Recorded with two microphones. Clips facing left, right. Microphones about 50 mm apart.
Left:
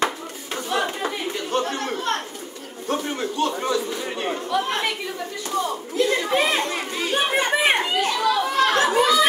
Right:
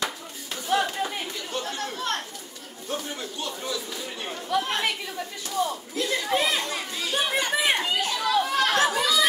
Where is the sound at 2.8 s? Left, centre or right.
Left.